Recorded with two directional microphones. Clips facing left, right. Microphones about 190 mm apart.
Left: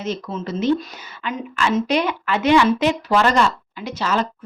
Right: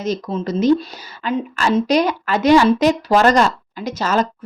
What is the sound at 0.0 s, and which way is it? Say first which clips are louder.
Speech: right 4 dB; 35° right (ahead or behind).